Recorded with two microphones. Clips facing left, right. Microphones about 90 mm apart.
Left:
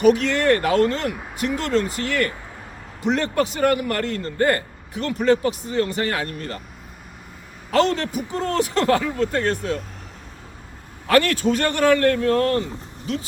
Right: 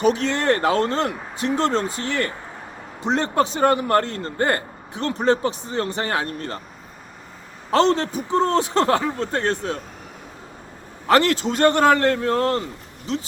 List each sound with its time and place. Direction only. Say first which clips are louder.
0.0 s a man's voice: left 3 dB; 30° right (ahead or behind)
7.7 s a man's voice: right 1 dB; 25° right (ahead or behind)
11.0 s a man's voice: even; 30° right (ahead or behind)